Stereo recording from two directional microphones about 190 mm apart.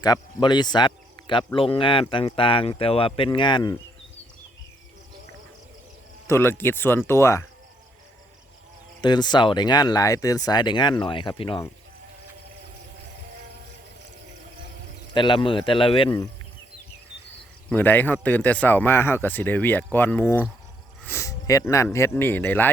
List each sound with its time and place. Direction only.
0.0 s speech: 20° left (ahead or behind)
6.2 s speech: 15° left (ahead or behind)
9.0 s speech: 20° left (ahead or behind)
15.1 s speech: 25° left (ahead or behind)
17.7 s speech: 10° left (ahead or behind)